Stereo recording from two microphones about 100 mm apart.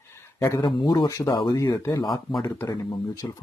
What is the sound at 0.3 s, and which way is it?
Speech, 30° left (ahead or behind).